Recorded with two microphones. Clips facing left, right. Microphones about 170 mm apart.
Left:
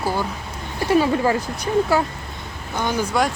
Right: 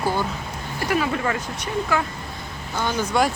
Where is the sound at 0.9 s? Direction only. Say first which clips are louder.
Left 6 dB; 30° left (ahead or behind).